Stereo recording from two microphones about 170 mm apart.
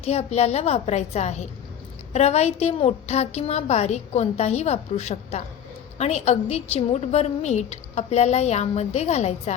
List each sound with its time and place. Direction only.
0.0 s a woman's voice: 35° left (ahead or behind)